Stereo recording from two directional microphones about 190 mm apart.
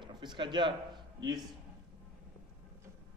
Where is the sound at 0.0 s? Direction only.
25° right (ahead or behind).